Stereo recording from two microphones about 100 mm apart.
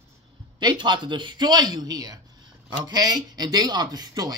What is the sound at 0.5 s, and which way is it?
A man's voice, 50° right (ahead or behind).